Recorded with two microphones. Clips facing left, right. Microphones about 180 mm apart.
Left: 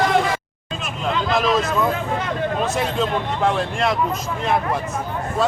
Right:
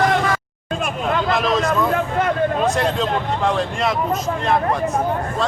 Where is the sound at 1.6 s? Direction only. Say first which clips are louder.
Right 2 dB; 55° right (ahead or behind).